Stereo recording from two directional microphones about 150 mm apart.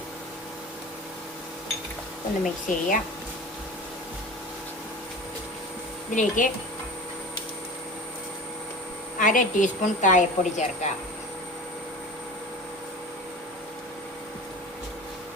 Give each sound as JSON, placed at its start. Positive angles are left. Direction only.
{"t": 2.4, "sound": "a woman's voice", "side_deg": 60}
{"t": 6.1, "sound": "a woman's voice", "side_deg": 60}
{"t": 9.1, "sound": "a woman's voice", "side_deg": 60}